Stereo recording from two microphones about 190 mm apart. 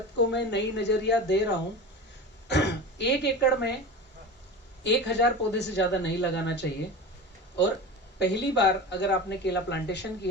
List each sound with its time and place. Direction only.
0.3 s speech: 65° left (ahead or behind)
4.8 s speech: 65° left (ahead or behind)
8.2 s speech: 65° left (ahead or behind)